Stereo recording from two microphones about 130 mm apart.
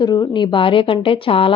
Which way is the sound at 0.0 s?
30° left (ahead or behind).